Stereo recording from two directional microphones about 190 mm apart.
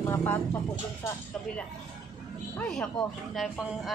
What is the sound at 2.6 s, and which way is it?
A woman's voice, 5° left (ahead or behind).